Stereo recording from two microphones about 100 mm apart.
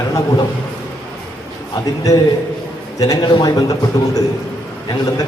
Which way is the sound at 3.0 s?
35° left (ahead or behind).